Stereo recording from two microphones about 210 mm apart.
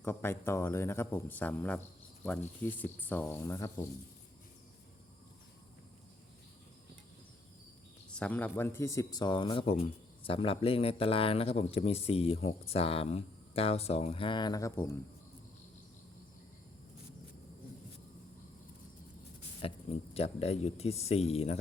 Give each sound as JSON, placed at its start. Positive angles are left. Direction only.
{"t": 0.0, "sound": "speech", "side_deg": 10}
{"t": 8.1, "sound": "speech", "side_deg": 5}
{"t": 19.6, "sound": "speech", "side_deg": 30}